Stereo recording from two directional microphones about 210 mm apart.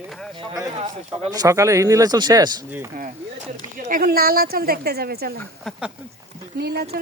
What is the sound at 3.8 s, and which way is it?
A woman's voice, 40° right (ahead or behind).